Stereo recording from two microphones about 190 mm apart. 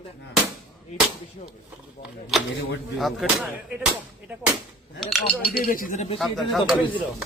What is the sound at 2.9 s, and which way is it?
Speech, centre (ahead or behind).